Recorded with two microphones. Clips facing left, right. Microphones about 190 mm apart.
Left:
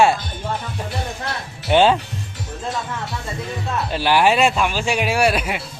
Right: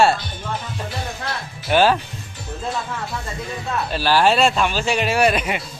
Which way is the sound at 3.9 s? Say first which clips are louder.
Left 1 dB; 20° left (ahead or behind).